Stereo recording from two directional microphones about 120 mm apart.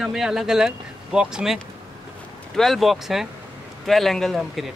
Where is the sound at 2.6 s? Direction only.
Centre (ahead or behind).